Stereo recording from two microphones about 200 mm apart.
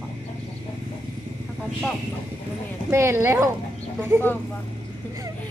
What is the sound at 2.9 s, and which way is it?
A woman's voice, 15° right (ahead or behind).